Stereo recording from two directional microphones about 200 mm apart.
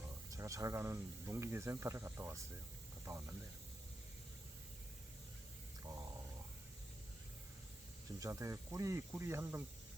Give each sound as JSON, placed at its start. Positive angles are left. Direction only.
{"t": 0.3, "sound": "speech", "side_deg": -15}
{"t": 5.8, "sound": "a sound", "side_deg": -15}
{"t": 8.2, "sound": "speech", "side_deg": -15}